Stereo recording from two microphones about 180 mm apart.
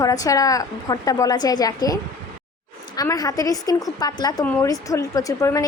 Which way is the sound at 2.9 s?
20° left (ahead or behind).